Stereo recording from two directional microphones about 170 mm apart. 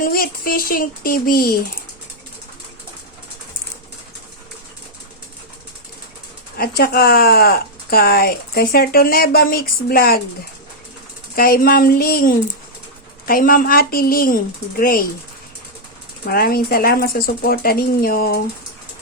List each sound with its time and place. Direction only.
0.0 s speech: 60° left (ahead or behind)
6.6 s speech: 60° left (ahead or behind)
11.3 s speech: 60° left (ahead or behind)
16.2 s speech: 65° left (ahead or behind)